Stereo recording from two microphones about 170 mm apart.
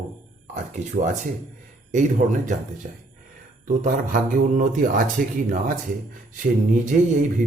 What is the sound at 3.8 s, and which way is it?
Speech, 50° right (ahead or behind).